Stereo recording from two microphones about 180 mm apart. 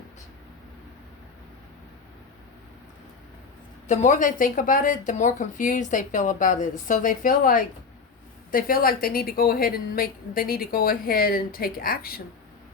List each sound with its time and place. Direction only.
3.8 s a woman's voice: 45° left (ahead or behind)